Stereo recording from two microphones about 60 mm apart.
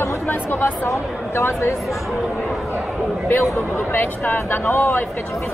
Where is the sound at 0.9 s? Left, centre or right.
Left.